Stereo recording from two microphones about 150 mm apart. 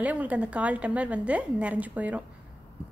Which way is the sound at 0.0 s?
10° right (ahead or behind).